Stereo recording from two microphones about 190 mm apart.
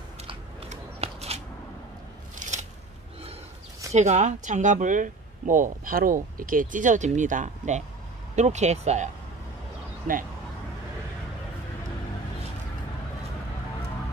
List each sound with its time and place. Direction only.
0.3 s scissors: 35° right (ahead or behind)
3.9 s speech: 40° right (ahead or behind)